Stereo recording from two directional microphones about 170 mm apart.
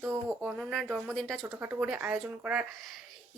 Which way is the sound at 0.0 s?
15° right (ahead or behind).